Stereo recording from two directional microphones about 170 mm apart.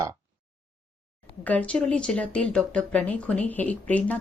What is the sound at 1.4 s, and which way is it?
Speech, 10° left (ahead or behind).